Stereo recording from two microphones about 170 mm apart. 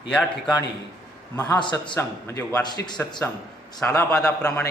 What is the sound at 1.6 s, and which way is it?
Speech, 25° left (ahead or behind).